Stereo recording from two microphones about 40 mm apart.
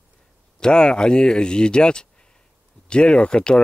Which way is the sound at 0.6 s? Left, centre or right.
Left.